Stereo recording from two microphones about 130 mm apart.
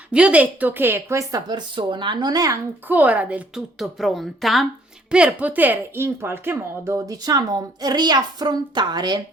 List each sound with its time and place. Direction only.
0.1 s speech: 10° right (ahead or behind); by 2.6 s 30° right (ahead or behind)
2.8 s a woman's voice: 10° right (ahead or behind); by 9.2 s 35° right (ahead or behind)